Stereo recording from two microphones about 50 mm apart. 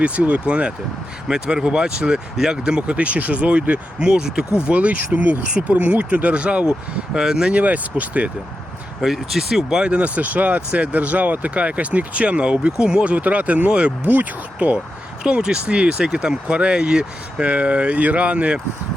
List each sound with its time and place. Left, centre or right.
0.0 s speech: right
4.1 s speech: centre
4.6 s speech: right; by 7.5 s centre
7.5 s speech: right
9.0 s speech: centre
13.1 s speech: right
14.1 s speech: right
15.2 s speech: centre